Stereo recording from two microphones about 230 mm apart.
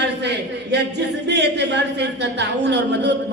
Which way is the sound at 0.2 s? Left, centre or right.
Right.